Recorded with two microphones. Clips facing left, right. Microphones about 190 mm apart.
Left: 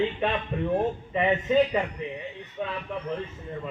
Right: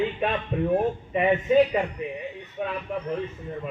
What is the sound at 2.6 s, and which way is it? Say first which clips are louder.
Speech: right 2 dB; 15° right (ahead or behind).